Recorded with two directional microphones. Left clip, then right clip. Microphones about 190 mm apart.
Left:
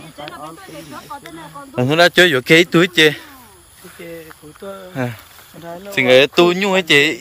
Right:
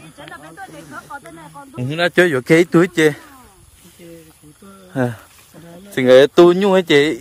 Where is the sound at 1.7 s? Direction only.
10° right (ahead or behind).